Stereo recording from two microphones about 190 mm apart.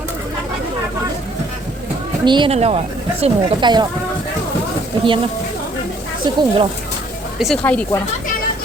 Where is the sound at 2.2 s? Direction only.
25° right (ahead or behind).